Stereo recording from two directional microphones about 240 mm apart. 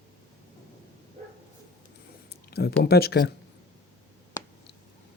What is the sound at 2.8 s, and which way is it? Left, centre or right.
Speech, left.